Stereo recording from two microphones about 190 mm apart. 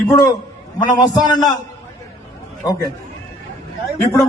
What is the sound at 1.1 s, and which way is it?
Speech, 20° left (ahead or behind).